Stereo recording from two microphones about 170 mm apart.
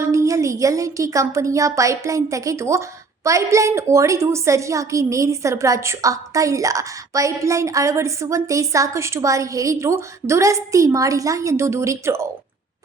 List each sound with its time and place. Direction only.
0.0 s a woman's voice: 15° right (ahead or behind)